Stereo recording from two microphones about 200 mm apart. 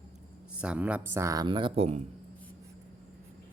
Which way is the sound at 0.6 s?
5° right (ahead or behind).